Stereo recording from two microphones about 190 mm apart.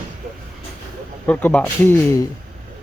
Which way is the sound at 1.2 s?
10° left (ahead or behind).